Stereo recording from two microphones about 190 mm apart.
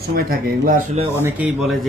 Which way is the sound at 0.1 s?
50° right (ahead or behind).